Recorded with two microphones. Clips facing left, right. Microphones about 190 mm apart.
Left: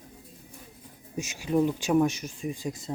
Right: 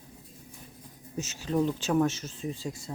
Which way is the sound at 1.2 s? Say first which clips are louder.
Left 3 dB; 15° left (ahead or behind).